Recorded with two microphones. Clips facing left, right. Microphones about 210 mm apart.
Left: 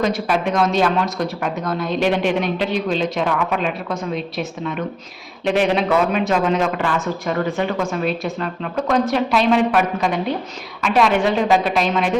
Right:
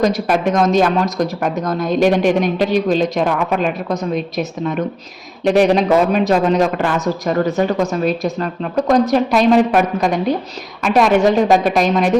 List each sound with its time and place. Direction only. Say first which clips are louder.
0.0 s speech: right 4 dB; 45° right (ahead or behind)